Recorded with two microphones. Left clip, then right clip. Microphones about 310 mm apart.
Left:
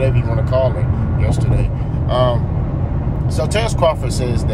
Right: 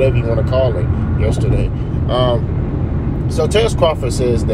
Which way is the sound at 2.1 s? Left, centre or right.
Centre.